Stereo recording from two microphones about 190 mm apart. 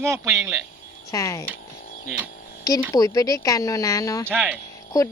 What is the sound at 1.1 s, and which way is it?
Speech, 15° left (ahead or behind).